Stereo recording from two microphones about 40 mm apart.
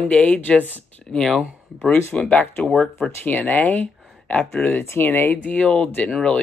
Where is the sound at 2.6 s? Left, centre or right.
Left.